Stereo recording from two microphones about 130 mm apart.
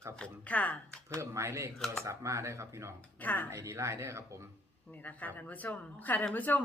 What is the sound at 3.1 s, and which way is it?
Speech, 10° left (ahead or behind).